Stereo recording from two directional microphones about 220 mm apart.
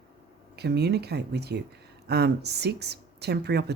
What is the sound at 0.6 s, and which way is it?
Speech, 50° right (ahead or behind).